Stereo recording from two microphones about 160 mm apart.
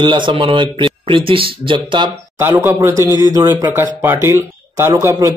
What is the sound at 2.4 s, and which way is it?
Speech, 10° right (ahead or behind).